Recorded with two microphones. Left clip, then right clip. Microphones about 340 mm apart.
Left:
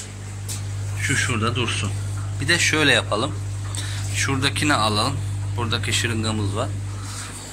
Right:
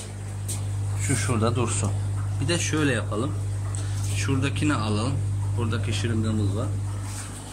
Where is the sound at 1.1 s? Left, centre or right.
Centre.